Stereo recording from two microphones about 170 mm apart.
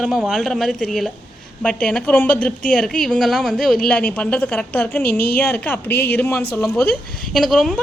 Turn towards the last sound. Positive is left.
turn(degrees=0)  # may be behind; listen again after turning